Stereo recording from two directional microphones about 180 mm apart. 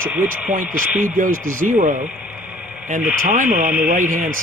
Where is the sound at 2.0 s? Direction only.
5° right (ahead or behind).